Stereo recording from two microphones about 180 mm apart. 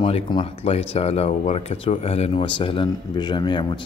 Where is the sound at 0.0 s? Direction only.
30° left (ahead or behind).